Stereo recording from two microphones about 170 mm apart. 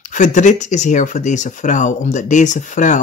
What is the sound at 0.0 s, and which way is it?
Speech, 45° left (ahead or behind).